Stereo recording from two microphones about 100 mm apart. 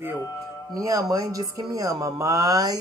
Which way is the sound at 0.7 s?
35° right (ahead or behind).